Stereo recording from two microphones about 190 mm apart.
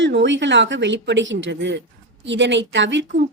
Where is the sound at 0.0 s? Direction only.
70° right (ahead or behind).